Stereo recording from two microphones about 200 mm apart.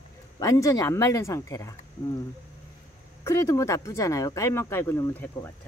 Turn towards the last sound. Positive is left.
turn(degrees=10)  # may be behind; listen again after turning